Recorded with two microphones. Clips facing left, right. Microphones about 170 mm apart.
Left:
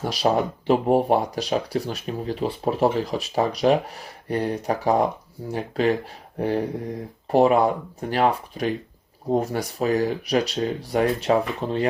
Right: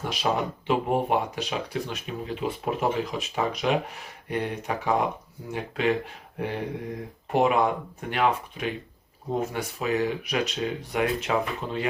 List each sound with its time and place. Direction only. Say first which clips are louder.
0.0 s speech: left 5 dB; 35° left (ahead or behind)
7.3 s speech: left 5 dB; 35° left (ahead or behind)